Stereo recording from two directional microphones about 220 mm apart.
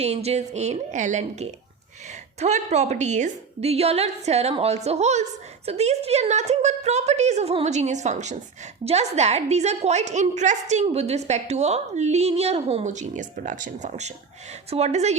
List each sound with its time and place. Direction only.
0.0 s a woman's voice: 30° right (ahead or behind)